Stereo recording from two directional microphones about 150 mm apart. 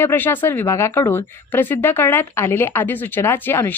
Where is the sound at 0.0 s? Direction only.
15° left (ahead or behind).